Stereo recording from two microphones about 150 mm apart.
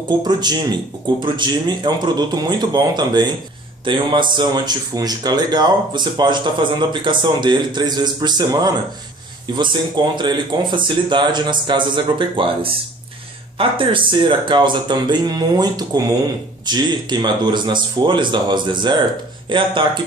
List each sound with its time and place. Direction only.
0.2 s speech: 30° right (ahead or behind)